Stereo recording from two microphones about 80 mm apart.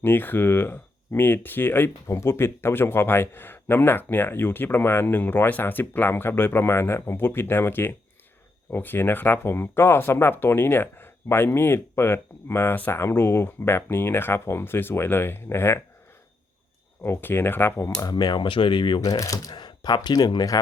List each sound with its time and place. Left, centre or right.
0.0 s speech: left
17.0 s speech: left
18.0 s speech: left
19.0 s speech: left